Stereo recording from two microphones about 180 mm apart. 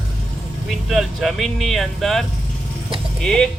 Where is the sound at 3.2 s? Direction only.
5° left (ahead or behind).